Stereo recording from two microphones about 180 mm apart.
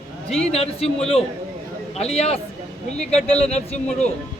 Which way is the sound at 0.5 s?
35° left (ahead or behind).